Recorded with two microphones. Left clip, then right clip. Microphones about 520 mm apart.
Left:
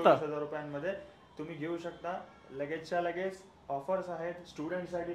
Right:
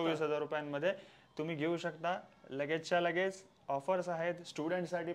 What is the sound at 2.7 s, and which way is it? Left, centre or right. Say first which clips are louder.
Speech: right 1 dB; right.